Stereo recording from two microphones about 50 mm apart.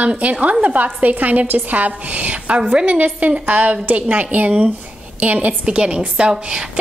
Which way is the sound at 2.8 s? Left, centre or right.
Right.